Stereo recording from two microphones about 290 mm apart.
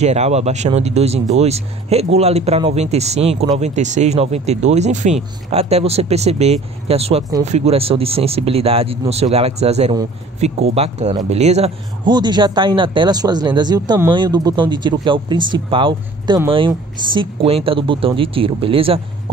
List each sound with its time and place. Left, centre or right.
0.0 s speech: right